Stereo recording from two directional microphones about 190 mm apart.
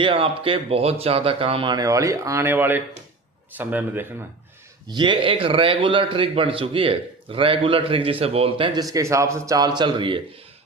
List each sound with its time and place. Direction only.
0.0 s a man's voice: 25° right (ahead or behind); by 4.0 s 10° right (ahead or behind)
4.9 s a man's voice: 25° right (ahead or behind)